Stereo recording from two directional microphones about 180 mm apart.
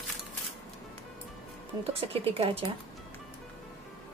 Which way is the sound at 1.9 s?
30° right (ahead or behind).